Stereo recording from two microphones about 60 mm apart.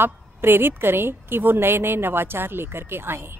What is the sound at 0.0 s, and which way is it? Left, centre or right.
Speech, right.